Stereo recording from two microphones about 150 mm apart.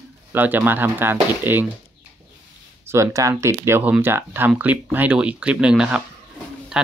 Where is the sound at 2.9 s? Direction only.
20° right (ahead or behind).